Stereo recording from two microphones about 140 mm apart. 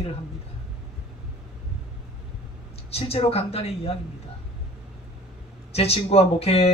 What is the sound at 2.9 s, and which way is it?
A man's voice, 45° left (ahead or behind).